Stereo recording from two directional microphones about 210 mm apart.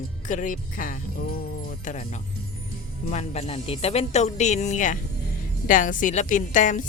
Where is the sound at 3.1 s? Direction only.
30° left (ahead or behind).